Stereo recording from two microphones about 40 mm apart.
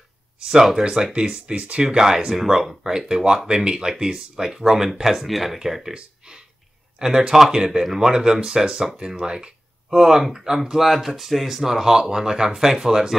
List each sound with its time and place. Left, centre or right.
0.5 s speech: centre
1.5 s speech: right
2.0 s speech: centre
2.9 s speech: centre
5.9 s speech: centre